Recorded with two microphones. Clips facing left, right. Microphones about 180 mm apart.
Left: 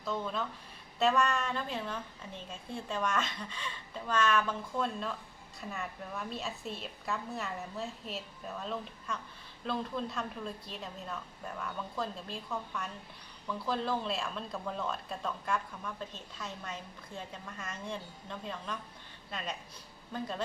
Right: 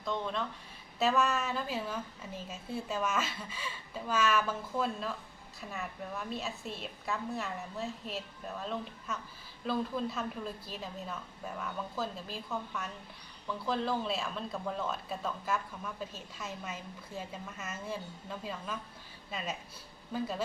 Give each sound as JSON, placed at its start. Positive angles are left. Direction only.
{"t": 0.0, "sound": "speech", "side_deg": 5}